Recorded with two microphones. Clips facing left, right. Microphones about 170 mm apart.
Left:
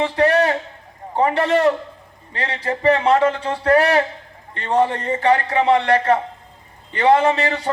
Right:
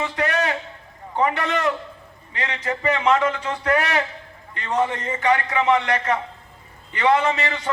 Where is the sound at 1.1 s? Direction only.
35° left (ahead or behind).